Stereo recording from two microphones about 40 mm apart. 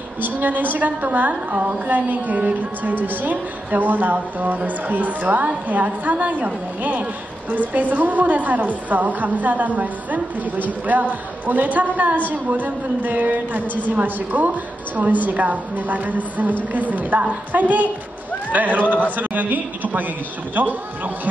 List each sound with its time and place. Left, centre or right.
0.2 s a woman's voice: right